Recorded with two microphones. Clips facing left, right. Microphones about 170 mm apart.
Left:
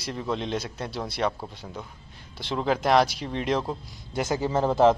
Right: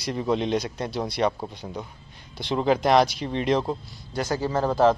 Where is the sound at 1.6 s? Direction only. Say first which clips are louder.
Right 4 dB; 15° right (ahead or behind).